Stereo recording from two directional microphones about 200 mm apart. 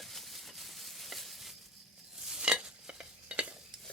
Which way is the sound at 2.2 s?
5° right (ahead or behind).